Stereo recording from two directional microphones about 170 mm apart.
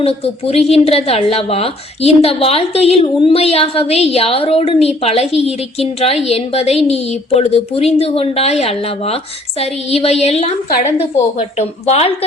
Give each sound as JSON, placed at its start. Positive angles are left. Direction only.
{"t": 0.0, "sound": "a woman's voice", "side_deg": 35}